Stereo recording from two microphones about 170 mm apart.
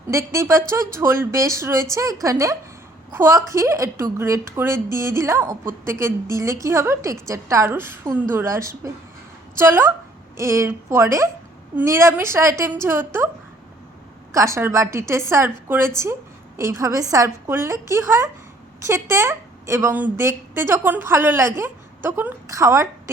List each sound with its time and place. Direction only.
0.1 s a woman's voice: 15° right (ahead or behind)
14.3 s a woman's voice: 15° right (ahead or behind)